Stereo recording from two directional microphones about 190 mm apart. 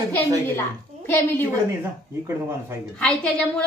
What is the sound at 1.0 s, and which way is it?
Speech, 10° left (ahead or behind).